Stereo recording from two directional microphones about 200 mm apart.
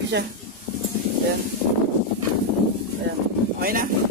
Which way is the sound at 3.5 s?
45° right (ahead or behind).